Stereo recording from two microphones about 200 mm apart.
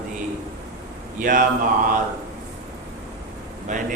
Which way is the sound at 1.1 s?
40° right (ahead or behind).